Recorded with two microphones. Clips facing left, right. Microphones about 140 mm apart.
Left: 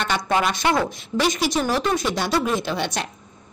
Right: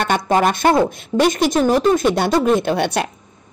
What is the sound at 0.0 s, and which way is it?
Speech, 50° right (ahead or behind).